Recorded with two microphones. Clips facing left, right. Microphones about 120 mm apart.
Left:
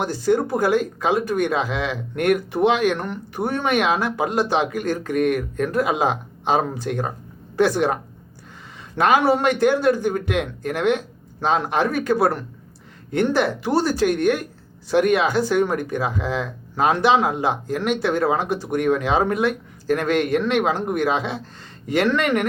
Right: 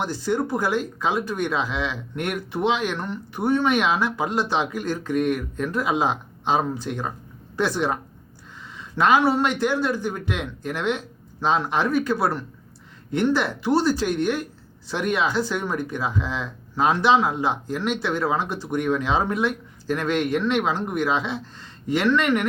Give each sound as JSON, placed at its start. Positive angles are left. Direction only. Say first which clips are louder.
{"t": 0.0, "sound": "speech", "louder": "left 4 dB", "side_deg": 50}
{"t": 9.0, "sound": "speech", "louder": "left 1 dB", "side_deg": 50}
{"t": 13.1, "sound": "speech", "louder": "left 2 dB", "side_deg": 50}
{"t": 18.4, "sound": "speech", "louder": "left 6 dB", "side_deg": 15}
{"t": 18.7, "sound": "speech", "louder": "left 3 dB", "side_deg": 55}